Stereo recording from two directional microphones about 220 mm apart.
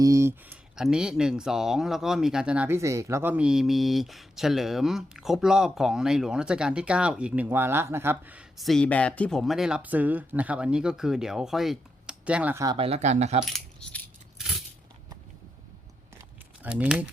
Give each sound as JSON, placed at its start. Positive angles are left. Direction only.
{"t": 0.0, "sound": "speech", "side_deg": -15}
{"t": 12.7, "sound": "speech", "side_deg": -25}
{"t": 13.4, "sound": "coin", "side_deg": 0}
{"t": 16.6, "sound": "speech", "side_deg": -5}